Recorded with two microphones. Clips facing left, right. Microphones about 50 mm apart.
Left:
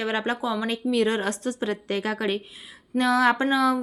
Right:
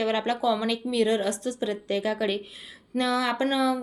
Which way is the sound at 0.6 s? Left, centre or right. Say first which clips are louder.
Left 1 dB; left.